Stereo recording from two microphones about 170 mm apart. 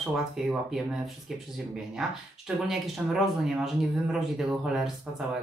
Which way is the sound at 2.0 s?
Centre (ahead or behind).